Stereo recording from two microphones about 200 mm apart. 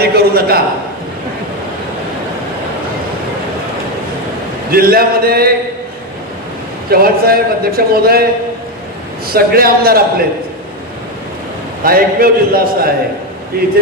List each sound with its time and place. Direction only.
0.0 s a man's voice: 50° right (ahead or behind)
4.7 s a man's voice: 45° right (ahead or behind)
6.9 s a man's voice: 50° right (ahead or behind)
11.8 s a man's voice: 45° right (ahead or behind)